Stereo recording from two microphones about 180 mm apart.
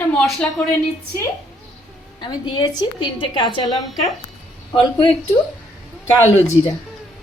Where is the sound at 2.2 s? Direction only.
25° left (ahead or behind).